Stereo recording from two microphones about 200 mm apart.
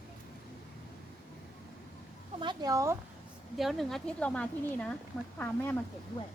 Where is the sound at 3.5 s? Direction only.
Centre (ahead or behind).